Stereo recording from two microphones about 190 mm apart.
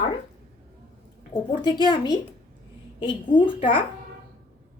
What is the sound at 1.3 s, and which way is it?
A woman's voice, 25° left (ahead or behind).